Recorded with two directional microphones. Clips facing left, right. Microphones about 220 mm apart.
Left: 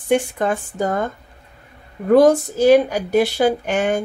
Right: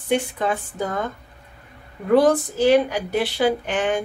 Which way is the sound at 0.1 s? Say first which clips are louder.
Left 4 dB; 45° left (ahead or behind).